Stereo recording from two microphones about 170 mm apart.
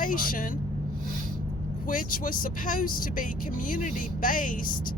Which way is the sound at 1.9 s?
55° left (ahead or behind).